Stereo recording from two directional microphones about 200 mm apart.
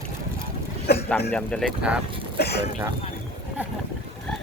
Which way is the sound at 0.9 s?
50° left (ahead or behind).